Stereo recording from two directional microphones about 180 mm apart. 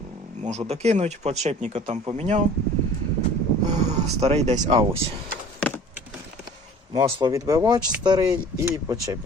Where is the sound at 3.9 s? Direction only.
35° right (ahead or behind).